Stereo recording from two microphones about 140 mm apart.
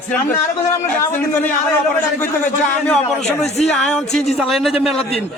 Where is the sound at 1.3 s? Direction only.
15° left (ahead or behind).